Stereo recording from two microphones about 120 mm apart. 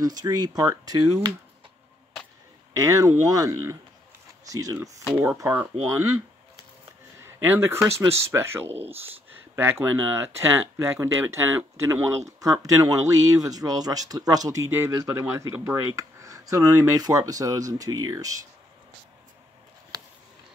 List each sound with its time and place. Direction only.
0.0 s speech: 35° right (ahead or behind)
2.7 s speech: 30° right (ahead or behind)
5.1 s speech: 10° right (ahead or behind)
7.2 s a sound: 20° right (ahead or behind)
8.1 s speech: 20° right (ahead or behind)